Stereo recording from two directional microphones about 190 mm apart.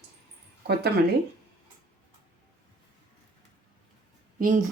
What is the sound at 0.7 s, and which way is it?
Speech, 55° right (ahead or behind).